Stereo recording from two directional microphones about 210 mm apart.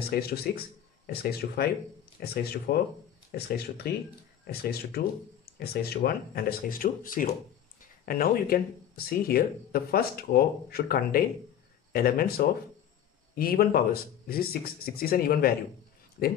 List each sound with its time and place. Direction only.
0.0 s speech: 45° left (ahead or behind)